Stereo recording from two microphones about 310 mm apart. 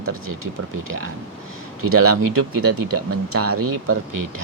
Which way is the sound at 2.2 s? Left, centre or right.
Right.